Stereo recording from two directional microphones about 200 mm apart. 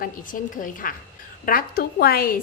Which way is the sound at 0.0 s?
45° left (ahead or behind).